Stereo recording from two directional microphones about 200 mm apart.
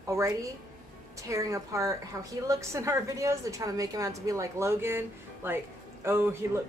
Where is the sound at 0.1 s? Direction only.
15° right (ahead or behind).